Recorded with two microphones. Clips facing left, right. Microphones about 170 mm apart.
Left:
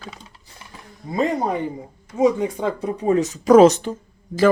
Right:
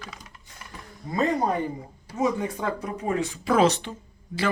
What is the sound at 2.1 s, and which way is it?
Speech, 15° left (ahead or behind).